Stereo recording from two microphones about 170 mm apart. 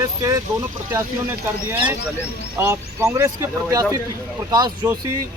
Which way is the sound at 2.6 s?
15° right (ahead or behind).